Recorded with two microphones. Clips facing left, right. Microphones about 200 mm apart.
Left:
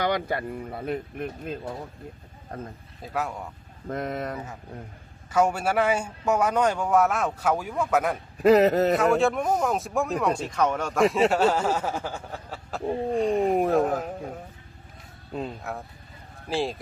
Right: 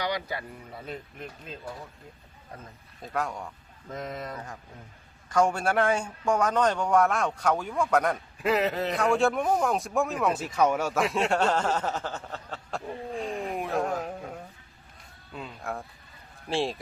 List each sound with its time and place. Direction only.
0.0 s speech: 55° left (ahead or behind)
3.0 s speech: 5° left (ahead or behind)
3.8 s speech: 60° left (ahead or behind)
5.3 s speech: 5° left (ahead or behind)
8.4 s a man's voice: 40° left (ahead or behind)
9.0 s speech: centre (ahead or behind)
13.5 s a man's voice: 45° left (ahead or behind)
13.7 s speech: centre (ahead or behind)
15.3 s speech: 40° left (ahead or behind)
16.5 s speech: centre (ahead or behind)